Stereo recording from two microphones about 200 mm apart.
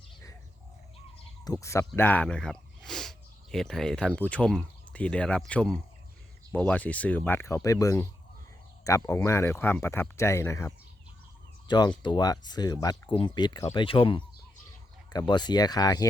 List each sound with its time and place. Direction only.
1.5 s speech: 15° left (ahead or behind)
11.7 s speech: 20° left (ahead or behind)